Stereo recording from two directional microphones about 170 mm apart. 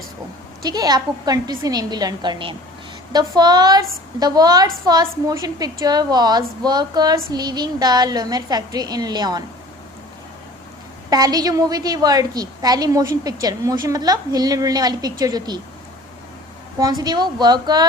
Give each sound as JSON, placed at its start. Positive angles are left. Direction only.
{"t": 0.6, "sound": "a woman's voice", "side_deg": -20}
{"t": 11.1, "sound": "a woman's voice", "side_deg": -20}
{"t": 16.7, "sound": "a woman's voice", "side_deg": -25}